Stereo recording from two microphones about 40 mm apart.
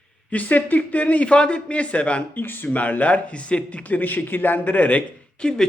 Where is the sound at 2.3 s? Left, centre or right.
Left.